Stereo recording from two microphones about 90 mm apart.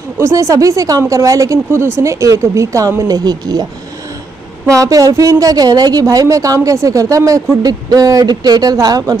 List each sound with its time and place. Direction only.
0.2 s a woman's voice: 35° right (ahead or behind)
4.6 s a woman's voice: 40° right (ahead or behind)